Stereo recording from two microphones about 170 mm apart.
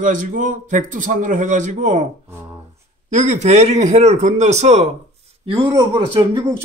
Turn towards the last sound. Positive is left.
turn(degrees=-25)  # may be behind; listen again after turning